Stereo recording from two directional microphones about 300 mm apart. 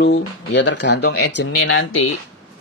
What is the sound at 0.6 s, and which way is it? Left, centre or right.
Speech, left.